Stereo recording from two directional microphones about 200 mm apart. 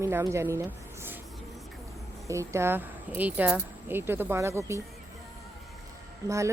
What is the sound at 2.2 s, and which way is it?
A woman's voice, 15° right (ahead or behind).